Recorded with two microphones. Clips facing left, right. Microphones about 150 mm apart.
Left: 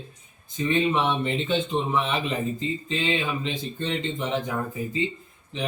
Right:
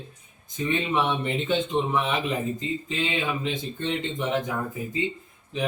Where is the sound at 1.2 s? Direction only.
Centre (ahead or behind).